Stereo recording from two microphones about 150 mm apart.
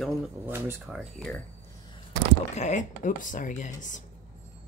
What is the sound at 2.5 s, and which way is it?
Speech, 50° left (ahead or behind).